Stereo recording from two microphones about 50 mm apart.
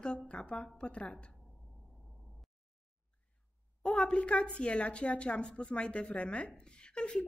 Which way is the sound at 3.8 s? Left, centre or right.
Centre.